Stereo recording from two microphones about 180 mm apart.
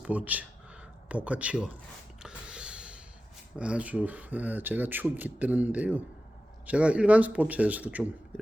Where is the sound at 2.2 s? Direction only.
5° right (ahead or behind).